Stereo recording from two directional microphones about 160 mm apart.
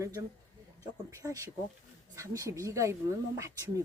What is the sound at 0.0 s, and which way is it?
A woman's voice, 20° right (ahead or behind).